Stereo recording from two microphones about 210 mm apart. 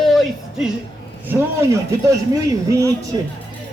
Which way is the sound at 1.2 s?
15° right (ahead or behind).